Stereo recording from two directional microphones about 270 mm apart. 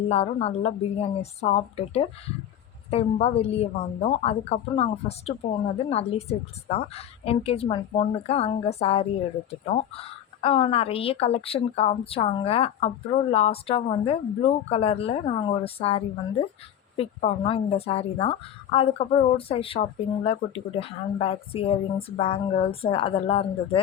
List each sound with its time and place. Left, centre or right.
0.1 s a woman's voice: left